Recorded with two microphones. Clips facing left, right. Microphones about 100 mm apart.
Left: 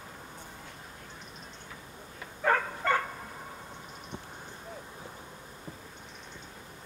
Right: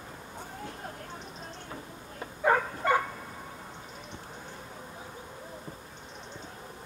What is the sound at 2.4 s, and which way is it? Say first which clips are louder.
Dog: right 2 dB; 15° right (ahead or behind).